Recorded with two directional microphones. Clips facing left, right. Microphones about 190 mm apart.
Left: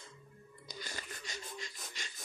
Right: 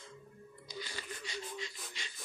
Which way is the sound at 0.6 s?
45° left (ahead or behind).